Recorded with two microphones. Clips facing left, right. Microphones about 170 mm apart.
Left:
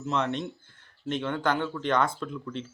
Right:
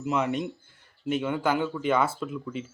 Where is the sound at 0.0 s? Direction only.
10° right (ahead or behind).